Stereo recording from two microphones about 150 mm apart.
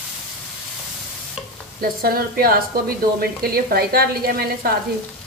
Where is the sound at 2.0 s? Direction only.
85° right.